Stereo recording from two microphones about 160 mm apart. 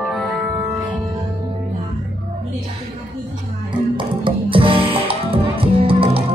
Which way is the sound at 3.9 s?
30° right (ahead or behind).